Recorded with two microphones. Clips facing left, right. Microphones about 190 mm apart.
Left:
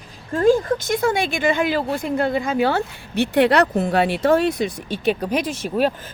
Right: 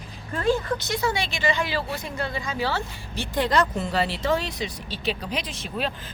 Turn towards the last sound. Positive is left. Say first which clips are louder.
# left 9 dB
turn(degrees=45)  # may be behind; listen again after turning